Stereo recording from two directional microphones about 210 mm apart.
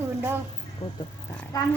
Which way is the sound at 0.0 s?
10° right (ahead or behind).